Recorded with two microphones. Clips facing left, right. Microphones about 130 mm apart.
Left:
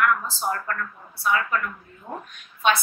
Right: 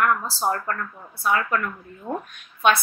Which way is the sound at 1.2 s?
45° right (ahead or behind).